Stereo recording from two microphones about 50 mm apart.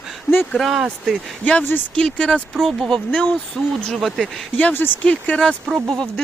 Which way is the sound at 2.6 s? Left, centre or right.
Centre.